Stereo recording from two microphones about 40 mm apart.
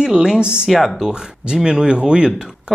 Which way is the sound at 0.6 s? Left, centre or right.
Centre.